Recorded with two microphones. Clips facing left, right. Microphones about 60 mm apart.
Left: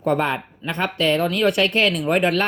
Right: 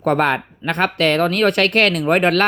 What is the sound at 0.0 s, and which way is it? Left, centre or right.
Speech, right.